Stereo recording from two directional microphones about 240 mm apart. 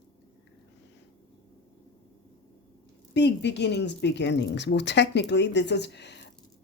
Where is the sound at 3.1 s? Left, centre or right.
Left.